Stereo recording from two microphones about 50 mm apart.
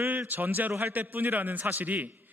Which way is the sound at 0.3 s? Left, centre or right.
Right.